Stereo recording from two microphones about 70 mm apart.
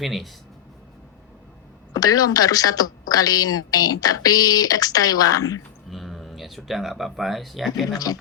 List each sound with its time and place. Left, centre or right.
0.0 s speech: centre
1.9 s speech: left
5.9 s speech: centre
7.9 s speech: left